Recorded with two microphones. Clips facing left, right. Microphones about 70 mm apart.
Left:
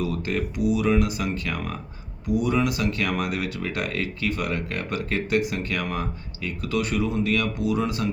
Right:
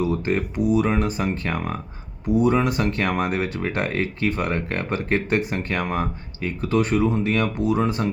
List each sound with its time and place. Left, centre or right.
0.0 s speech: right